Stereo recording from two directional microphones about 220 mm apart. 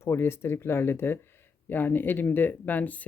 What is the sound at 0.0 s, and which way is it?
A woman's voice, 10° left (ahead or behind).